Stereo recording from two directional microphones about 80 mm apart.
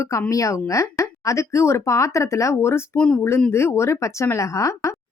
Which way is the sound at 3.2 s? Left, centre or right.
Left.